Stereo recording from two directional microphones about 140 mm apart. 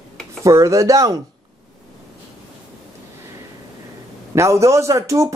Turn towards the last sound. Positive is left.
turn(degrees=-20)  # may be behind; listen again after turning